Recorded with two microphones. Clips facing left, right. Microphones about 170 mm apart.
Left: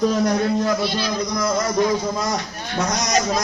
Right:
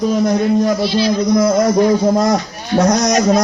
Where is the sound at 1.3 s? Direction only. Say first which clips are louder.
Right 7 dB; 30° right (ahead or behind).